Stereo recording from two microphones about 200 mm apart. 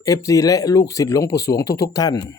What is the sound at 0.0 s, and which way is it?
Speech, 15° left (ahead or behind).